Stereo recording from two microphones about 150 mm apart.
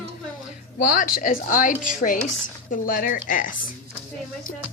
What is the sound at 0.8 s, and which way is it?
A woman's voice, 70° left (ahead or behind).